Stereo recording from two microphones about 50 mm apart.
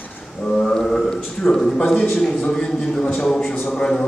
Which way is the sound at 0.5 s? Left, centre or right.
Centre.